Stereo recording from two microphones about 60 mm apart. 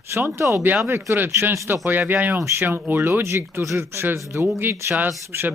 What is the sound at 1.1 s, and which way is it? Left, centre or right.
Speech, right.